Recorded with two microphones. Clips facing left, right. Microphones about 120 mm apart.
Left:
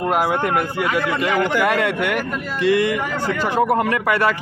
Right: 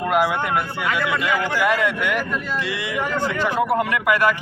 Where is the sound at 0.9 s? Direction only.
50° left (ahead or behind).